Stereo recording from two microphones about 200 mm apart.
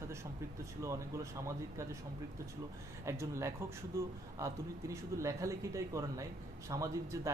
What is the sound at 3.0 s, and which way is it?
A man's voice, 15° right (ahead or behind).